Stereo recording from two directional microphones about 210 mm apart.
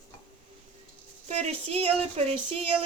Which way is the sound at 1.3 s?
30° right (ahead or behind).